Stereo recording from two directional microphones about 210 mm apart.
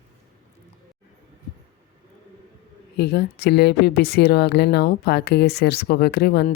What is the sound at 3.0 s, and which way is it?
A woman's voice, 50° left (ahead or behind).